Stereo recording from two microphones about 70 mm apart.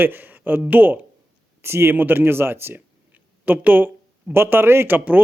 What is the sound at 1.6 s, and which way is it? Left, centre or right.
Speech, right.